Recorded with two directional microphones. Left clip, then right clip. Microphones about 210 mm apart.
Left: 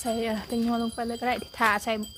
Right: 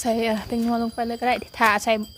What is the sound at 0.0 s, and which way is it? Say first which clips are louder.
Wind chime: right 6 dB; 15° right (ahead or behind).